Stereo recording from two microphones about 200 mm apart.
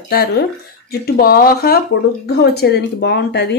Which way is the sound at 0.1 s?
50° left (ahead or behind).